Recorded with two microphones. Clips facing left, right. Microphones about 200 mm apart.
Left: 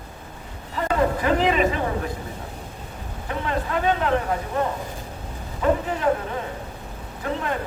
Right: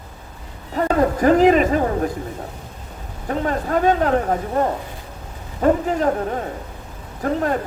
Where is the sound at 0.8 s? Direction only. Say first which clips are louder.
Right 5 dB; 45° right (ahead or behind).